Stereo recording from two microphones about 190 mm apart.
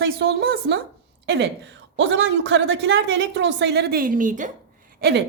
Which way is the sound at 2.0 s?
75° right (ahead or behind).